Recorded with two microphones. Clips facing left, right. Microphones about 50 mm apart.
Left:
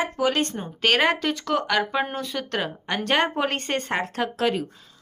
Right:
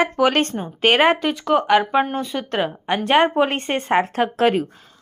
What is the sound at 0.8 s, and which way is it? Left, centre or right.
Speech, right.